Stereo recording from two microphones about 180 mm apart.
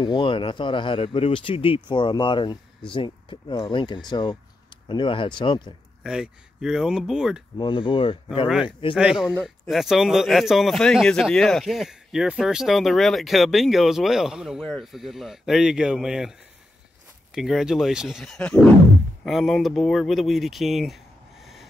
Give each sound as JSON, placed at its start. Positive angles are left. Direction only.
{"t": 0.0, "sound": "speech", "side_deg": 25}
{"t": 6.0, "sound": "speech", "side_deg": -5}
{"t": 7.5, "sound": "speech", "side_deg": 25}
{"t": 8.9, "sound": "speech", "side_deg": -5}